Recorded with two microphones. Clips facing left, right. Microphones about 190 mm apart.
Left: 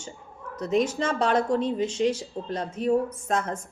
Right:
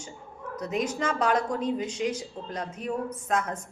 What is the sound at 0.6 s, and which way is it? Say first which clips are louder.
A woman's voice: left 5 dB; 25° left (ahead or behind).